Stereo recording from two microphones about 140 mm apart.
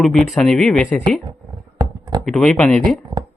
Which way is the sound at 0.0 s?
5° left (ahead or behind).